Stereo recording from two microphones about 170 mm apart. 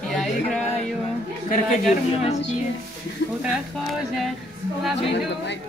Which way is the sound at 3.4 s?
Centre (ahead or behind).